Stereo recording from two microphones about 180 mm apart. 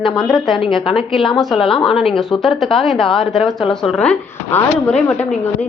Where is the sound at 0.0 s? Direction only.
Centre (ahead or behind).